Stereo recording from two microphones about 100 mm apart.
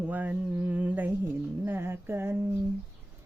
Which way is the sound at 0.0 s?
15° right (ahead or behind).